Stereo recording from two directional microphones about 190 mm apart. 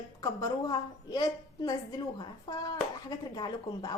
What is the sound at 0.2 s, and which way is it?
A woman's voice, 20° left (ahead or behind).